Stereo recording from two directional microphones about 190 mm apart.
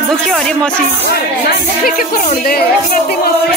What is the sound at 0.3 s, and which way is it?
Speech, centre (ahead or behind).